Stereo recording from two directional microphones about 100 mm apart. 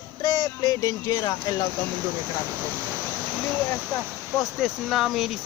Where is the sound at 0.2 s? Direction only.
40° left (ahead or behind).